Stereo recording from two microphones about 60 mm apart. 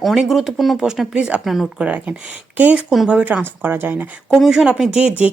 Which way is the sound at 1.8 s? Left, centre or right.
Right.